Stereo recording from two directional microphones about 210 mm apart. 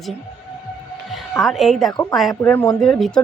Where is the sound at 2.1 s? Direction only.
5° left (ahead or behind).